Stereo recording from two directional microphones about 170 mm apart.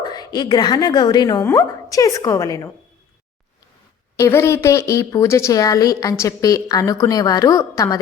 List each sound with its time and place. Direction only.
0.0 s a woman's voice: 25° left (ahead or behind)
4.2 s a woman's voice: 15° left (ahead or behind)